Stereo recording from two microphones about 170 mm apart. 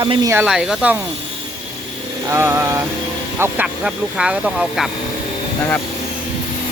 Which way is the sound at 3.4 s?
5° right (ahead or behind).